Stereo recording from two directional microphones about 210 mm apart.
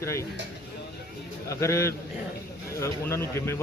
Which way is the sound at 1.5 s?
15° left (ahead or behind).